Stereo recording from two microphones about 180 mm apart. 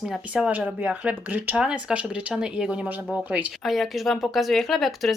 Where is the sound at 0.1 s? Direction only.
5° right (ahead or behind).